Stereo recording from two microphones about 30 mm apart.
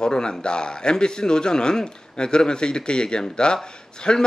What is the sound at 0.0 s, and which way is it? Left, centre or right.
A man's voice, left.